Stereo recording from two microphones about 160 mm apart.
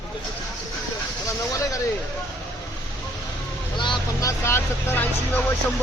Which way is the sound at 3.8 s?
30° left (ahead or behind).